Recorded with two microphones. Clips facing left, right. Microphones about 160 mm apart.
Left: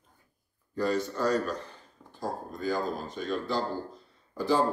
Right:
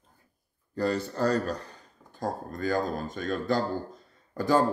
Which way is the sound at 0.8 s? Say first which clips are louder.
Right 1 dB; 35° right (ahead or behind).